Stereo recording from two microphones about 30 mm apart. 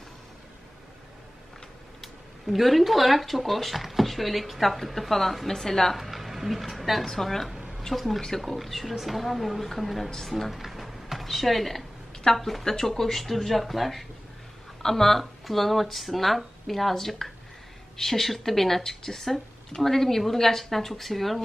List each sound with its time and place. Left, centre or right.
2.4 s speech: centre
5.5 s speech: centre
5.9 s speech: centre
8.2 s speech: centre
8.5 s speech: centre
10.0 s speech: centre
10.5 s a sound: centre
12.3 s speech: centre